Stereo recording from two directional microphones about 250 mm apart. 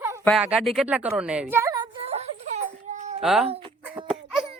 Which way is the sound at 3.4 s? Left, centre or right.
Right.